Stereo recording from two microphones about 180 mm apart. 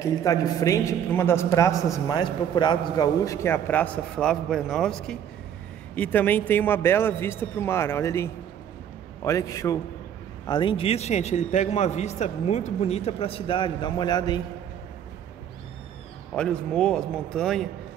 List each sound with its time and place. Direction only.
0.0 s a man's voice: 20° left (ahead or behind)
16.3 s a man's voice: 5° left (ahead or behind)